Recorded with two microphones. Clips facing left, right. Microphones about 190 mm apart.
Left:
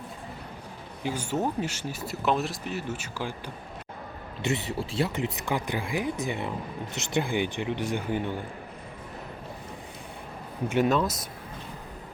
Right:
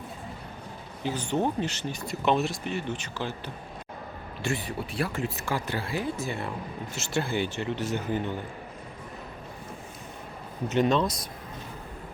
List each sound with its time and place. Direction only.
1.0 s speech: 10° left (ahead or behind)
4.4 s speech: 25° left (ahead or behind)
10.7 s speech: 5° left (ahead or behind)